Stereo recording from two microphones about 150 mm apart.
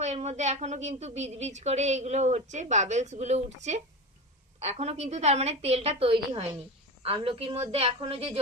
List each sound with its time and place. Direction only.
0.0 s a woman's voice: 50° right (ahead or behind)